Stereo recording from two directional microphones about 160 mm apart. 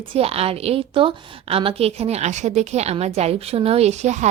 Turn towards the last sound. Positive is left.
turn(degrees=-45)  # may be behind; listen again after turning